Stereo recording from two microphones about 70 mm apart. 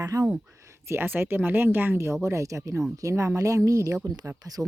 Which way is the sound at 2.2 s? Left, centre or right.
Right.